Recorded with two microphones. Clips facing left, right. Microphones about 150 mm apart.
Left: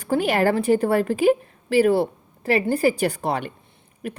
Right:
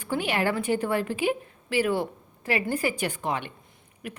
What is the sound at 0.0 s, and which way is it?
A woman's voice, 40° left (ahead or behind).